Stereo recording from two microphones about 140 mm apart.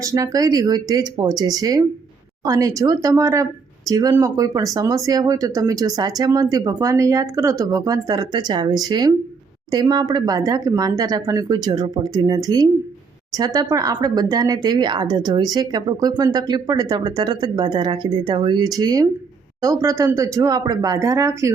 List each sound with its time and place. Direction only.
0.0 s speech: 25° right (ahead or behind)